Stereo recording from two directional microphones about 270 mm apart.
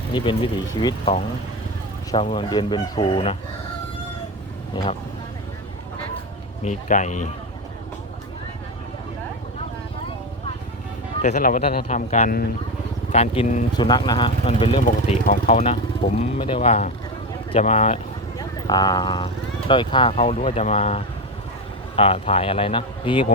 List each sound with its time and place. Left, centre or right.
0.1 s speech: centre
4.7 s speech: centre
6.7 s speech: left
11.2 s speech: left